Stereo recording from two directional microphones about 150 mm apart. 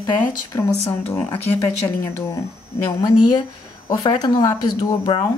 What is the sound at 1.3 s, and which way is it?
Speech, 15° left (ahead or behind).